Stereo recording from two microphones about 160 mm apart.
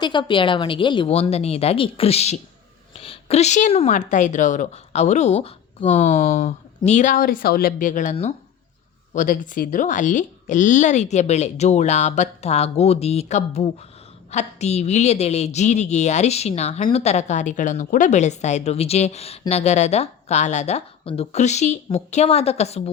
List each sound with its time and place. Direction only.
0.0 s a woman's voice: 30° left (ahead or behind); by 8.1 s 55° left (ahead or behind)
9.1 s speech: 60° left (ahead or behind); by 22.8 s 40° left (ahead or behind)